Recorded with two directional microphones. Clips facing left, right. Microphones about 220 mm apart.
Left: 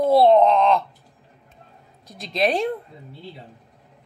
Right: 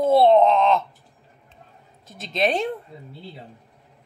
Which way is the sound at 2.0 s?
Centre (ahead or behind).